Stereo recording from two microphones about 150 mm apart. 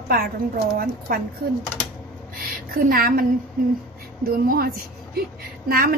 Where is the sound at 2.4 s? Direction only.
75° right (ahead or behind).